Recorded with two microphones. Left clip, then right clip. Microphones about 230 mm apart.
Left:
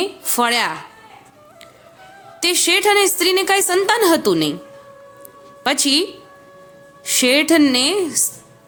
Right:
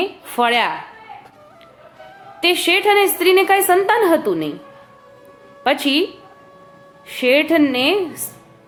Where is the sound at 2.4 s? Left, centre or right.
Left.